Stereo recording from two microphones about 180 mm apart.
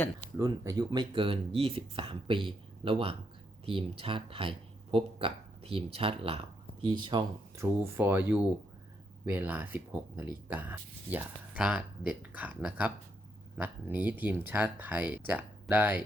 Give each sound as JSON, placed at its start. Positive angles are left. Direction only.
{"t": 0.3, "sound": "speech", "side_deg": -15}